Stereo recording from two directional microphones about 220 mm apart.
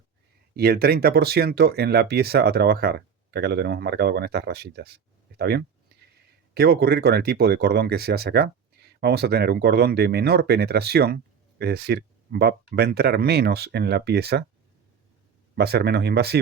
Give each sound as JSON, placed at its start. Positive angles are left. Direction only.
{"t": 0.5, "sound": "speech", "side_deg": -45}
{"t": 15.5, "sound": "speech", "side_deg": -45}